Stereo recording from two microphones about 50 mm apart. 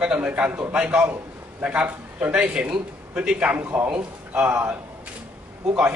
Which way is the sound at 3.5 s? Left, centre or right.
Right.